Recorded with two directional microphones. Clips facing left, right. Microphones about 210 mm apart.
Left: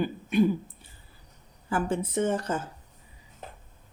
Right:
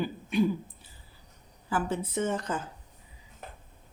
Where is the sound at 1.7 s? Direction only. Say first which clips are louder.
Left 2 dB; 50° left (ahead or behind).